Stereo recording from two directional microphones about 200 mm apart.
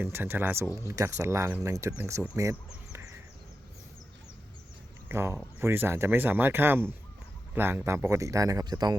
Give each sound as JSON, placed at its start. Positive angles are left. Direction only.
{"t": 0.0, "sound": "speech", "side_deg": -10}
{"t": 5.0, "sound": "speech", "side_deg": -10}